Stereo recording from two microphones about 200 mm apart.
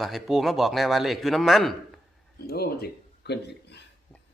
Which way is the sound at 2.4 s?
50° left (ahead or behind).